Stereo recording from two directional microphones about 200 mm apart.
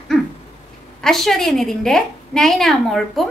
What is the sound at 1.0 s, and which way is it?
A woman's voice, centre (ahead or behind).